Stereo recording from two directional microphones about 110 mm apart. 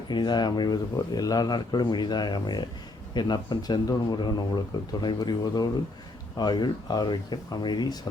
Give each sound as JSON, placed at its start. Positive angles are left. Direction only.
{"t": 0.1, "sound": "speech", "side_deg": 40}